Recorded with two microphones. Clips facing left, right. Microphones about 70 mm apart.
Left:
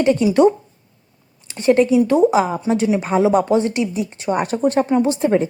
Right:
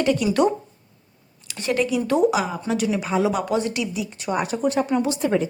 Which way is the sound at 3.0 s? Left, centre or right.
Left.